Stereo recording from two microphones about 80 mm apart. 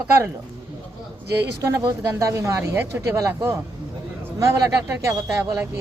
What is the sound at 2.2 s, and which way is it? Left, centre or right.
Speech, right.